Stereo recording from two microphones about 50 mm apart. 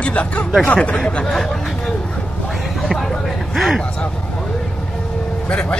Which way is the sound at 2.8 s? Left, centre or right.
Centre.